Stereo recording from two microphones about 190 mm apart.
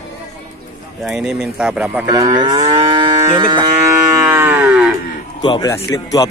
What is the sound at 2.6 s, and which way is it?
Moo, 25° right (ahead or behind).